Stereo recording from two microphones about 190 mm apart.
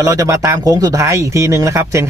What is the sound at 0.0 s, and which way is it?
Speech, 15° right (ahead or behind).